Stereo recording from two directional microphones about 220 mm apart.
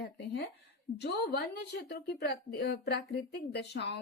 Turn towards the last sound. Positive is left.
turn(degrees=50)  # may be behind; listen again after turning